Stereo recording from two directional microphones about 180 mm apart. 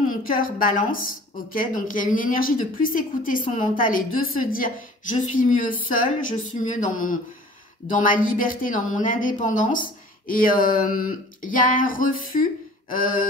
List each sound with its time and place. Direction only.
0.1 s a woman's voice: 50° left (ahead or behind)